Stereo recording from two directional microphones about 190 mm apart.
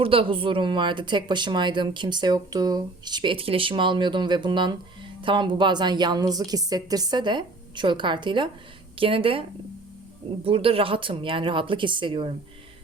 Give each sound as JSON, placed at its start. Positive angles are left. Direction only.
{"t": 0.0, "sound": "a woman's voice", "side_deg": -30}
{"t": 10.4, "sound": "a woman's voice", "side_deg": -30}